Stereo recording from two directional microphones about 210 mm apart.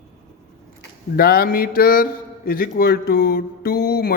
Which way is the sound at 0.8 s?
45° left (ahead or behind).